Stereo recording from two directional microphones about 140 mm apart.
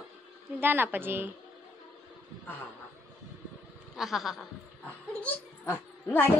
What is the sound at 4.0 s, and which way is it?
Speech, centre (ahead or behind).